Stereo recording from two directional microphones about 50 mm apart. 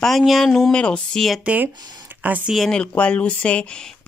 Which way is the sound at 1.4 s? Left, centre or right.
Right.